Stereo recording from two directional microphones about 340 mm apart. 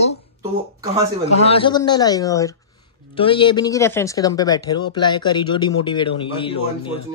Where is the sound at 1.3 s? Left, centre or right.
Centre.